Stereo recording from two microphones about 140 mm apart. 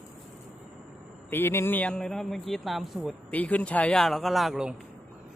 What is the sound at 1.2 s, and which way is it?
A man's voice, 15° left (ahead or behind).